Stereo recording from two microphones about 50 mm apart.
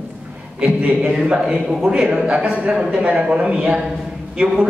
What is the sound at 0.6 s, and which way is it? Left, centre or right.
A man's voice, right.